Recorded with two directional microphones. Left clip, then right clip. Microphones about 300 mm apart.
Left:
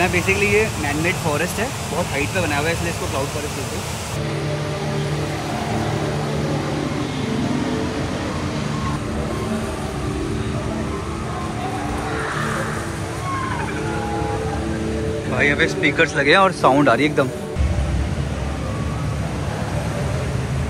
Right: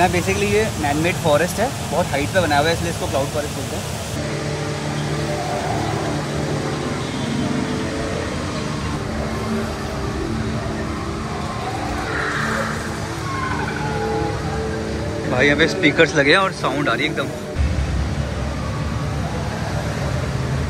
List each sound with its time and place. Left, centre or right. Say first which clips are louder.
0.0 s speech: even; centre
15.3 s speech: right 2 dB; centre